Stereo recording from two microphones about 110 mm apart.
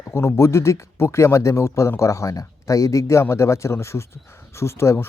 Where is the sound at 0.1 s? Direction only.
25° left (ahead or behind).